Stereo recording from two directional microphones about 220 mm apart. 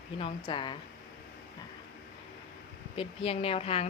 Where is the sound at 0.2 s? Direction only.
25° left (ahead or behind).